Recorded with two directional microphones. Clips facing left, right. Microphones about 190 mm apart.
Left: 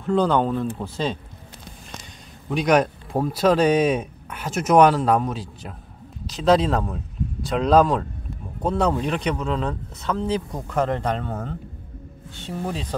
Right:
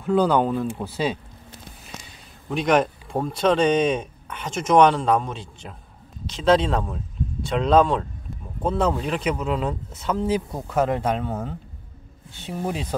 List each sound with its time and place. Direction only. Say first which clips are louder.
0.0 s speech: right 1 dB; 5° right (ahead or behind)
2.5 s speech: left 1 dB; centre (ahead or behind)